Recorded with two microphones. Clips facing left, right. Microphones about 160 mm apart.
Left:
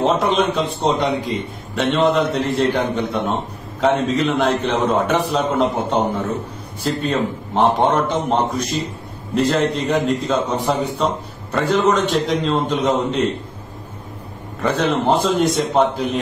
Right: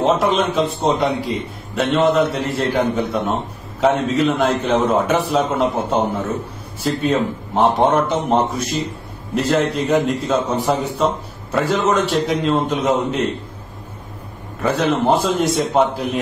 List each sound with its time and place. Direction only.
0.0 s a man's voice: centre (ahead or behind)
14.6 s a man's voice: 5° right (ahead or behind)